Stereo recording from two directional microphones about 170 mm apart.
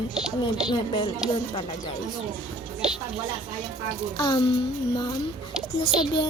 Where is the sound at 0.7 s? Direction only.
30° left (ahead or behind).